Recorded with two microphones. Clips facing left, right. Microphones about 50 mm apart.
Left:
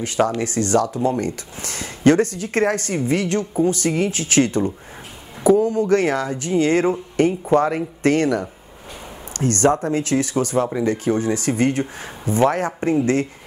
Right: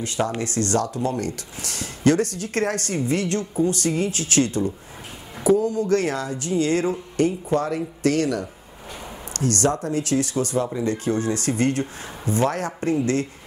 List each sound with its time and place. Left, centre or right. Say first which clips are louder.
0.2 s speech: left 5 dB; left
11.1 s speech: left 3 dB; left